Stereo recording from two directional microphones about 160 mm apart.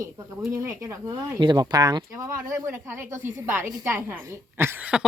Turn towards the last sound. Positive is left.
turn(degrees=-10)  # may be behind; listen again after turning